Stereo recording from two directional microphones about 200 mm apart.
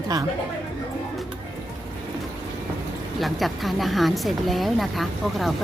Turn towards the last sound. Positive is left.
turn(degrees=0)  # may be behind; listen again after turning